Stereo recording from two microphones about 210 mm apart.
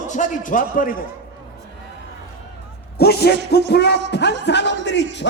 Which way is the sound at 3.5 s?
50° left (ahead or behind).